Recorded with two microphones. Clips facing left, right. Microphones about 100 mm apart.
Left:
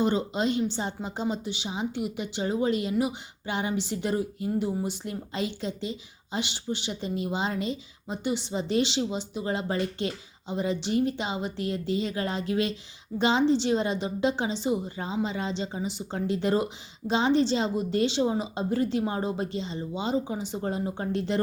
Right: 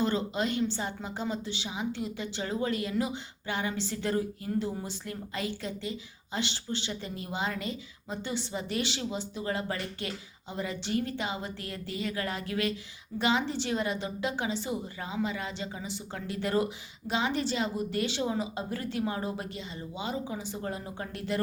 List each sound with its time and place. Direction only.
0.0 s a woman's voice: 20° left (ahead or behind)